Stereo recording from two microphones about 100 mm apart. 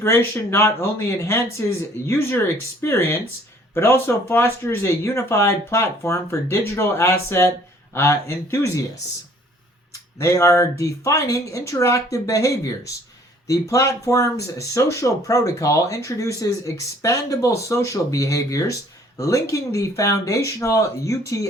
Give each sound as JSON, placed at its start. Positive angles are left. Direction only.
{"t": 0.0, "sound": "speech", "side_deg": 25}
{"t": 10.2, "sound": "speech", "side_deg": 30}